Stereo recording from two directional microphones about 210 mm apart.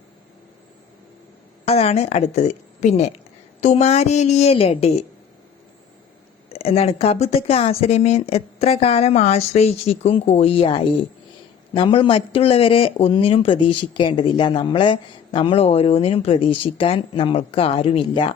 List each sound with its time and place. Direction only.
1.6 s a woman's voice: 30° left (ahead or behind)
6.5 s speech: 30° left (ahead or behind)